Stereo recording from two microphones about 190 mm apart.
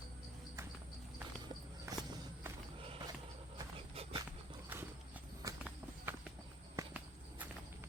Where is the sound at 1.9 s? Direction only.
15° right (ahead or behind).